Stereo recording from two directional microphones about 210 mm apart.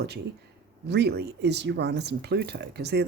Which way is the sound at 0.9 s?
55° right (ahead or behind).